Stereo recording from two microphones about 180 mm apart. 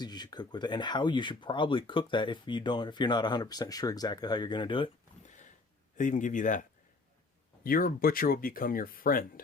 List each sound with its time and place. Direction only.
0.0 s speech: 25° left (ahead or behind)
6.0 s speech: 45° left (ahead or behind)